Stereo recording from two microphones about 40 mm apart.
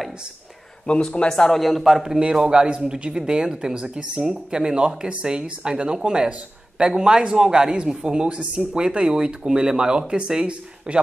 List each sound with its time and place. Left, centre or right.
0.8 s speech: left
1.3 s speech: centre
1.9 s a man's voice: centre
2.1 s speech: right